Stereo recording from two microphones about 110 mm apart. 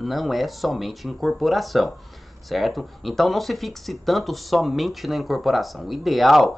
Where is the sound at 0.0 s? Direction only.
Centre (ahead or behind).